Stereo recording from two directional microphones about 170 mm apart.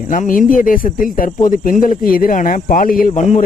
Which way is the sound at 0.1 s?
55° left (ahead or behind).